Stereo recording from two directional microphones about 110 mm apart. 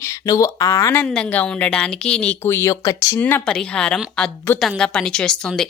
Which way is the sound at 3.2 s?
20° left (ahead or behind).